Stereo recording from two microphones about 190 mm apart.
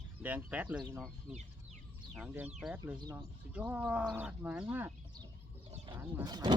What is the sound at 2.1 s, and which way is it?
Speech, 5° right (ahead or behind).